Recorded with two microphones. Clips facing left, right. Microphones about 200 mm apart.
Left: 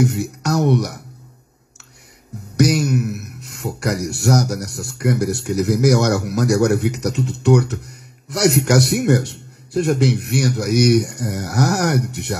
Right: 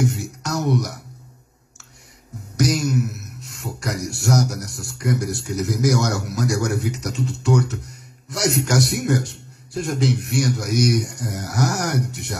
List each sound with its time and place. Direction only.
0.0 s music: 65° left (ahead or behind)
2.5 s a man's voice: 65° left (ahead or behind)